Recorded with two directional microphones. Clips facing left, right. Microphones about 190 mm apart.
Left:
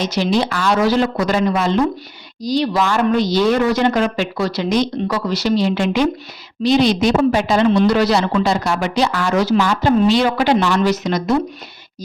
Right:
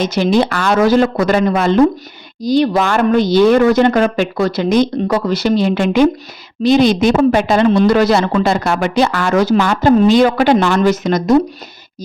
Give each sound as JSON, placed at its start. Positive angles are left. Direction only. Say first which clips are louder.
{"t": 0.0, "sound": "speech", "louder": "right 4 dB", "side_deg": -55}